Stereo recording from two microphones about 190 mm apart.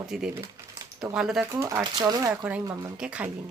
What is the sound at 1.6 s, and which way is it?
Speech, 15° right (ahead or behind).